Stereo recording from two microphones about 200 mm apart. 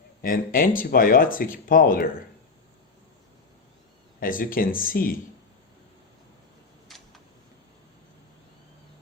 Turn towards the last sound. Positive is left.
turn(degrees=0)  # may be behind; listen again after turning